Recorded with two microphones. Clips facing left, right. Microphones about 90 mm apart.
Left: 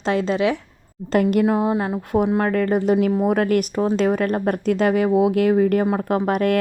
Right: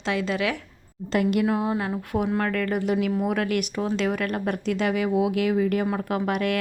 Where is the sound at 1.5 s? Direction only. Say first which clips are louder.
Left 5 dB; 25° left (ahead or behind).